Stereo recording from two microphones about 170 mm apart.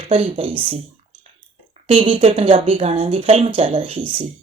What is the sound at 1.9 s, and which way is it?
Speech, 35° right (ahead or behind).